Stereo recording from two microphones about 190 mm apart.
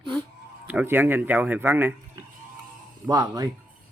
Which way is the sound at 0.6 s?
10° right (ahead or behind).